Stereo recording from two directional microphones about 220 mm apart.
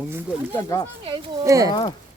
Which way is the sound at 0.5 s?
15° left (ahead or behind).